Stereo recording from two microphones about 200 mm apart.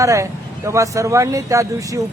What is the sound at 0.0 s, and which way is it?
A man's voice, 15° right (ahead or behind).